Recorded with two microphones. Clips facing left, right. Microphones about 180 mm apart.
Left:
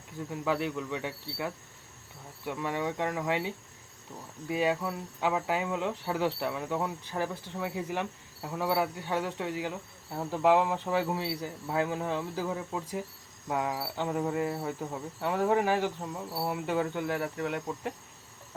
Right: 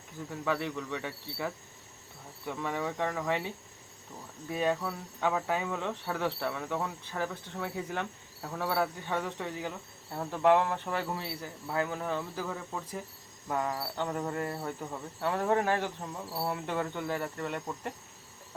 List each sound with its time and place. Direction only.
0.3 s cricket: 15° left (ahead or behind)